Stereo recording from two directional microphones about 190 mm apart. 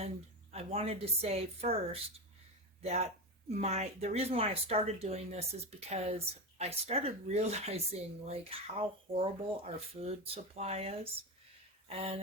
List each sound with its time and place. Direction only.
0.5 s speech: 30° right (ahead or behind)